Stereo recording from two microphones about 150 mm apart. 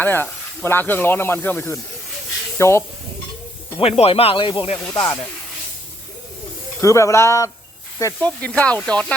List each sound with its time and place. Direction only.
0.0 s speech: 15° left (ahead or behind)
3.8 s speech: 40° left (ahead or behind)
6.8 s speech: 20° left (ahead or behind)
8.2 s speech: 10° left (ahead or behind)